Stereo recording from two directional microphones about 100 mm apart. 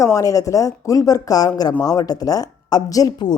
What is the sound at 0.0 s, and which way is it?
Speech, 35° left (ahead or behind).